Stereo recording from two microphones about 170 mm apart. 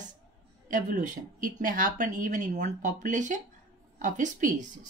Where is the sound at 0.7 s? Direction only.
50° right (ahead or behind).